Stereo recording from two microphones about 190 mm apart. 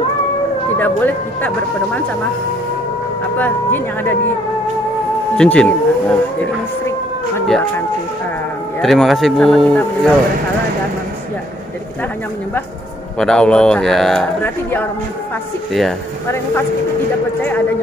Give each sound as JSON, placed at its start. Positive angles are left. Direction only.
{"t": 0.7, "sound": "speech", "side_deg": 10}
{"t": 3.3, "sound": "speech", "side_deg": 10}
{"t": 5.4, "sound": "speech", "side_deg": 5}
{"t": 8.8, "sound": "speech", "side_deg": 0}
{"t": 13.2, "sound": "speech", "side_deg": 5}